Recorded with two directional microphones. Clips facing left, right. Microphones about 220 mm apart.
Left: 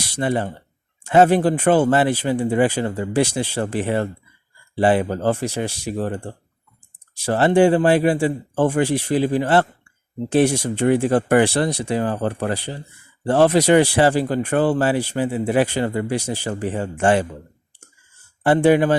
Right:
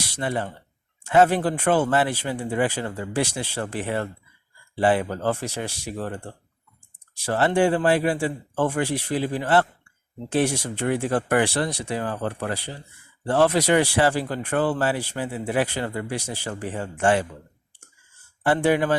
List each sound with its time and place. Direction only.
0.2 s speech: 20° left (ahead or behind)
5.4 s speech: 15° left (ahead or behind)
18.4 s speech: 25° left (ahead or behind)